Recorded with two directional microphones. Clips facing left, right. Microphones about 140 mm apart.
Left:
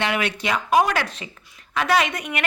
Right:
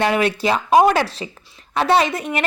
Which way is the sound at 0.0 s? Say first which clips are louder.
Right 6 dB; 35° right (ahead or behind).